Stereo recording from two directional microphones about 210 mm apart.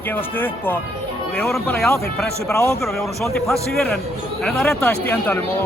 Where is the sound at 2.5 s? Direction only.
15° left (ahead or behind).